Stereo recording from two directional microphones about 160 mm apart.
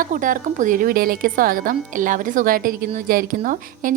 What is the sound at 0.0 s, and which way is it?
A woman's voice, 55° right (ahead or behind).